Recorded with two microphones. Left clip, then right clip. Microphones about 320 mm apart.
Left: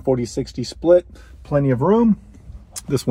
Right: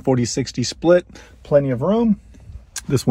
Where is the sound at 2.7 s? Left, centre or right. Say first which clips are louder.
Right 1 dB; centre.